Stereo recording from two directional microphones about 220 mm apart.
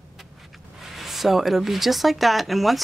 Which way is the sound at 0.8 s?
Centre (ahead or behind).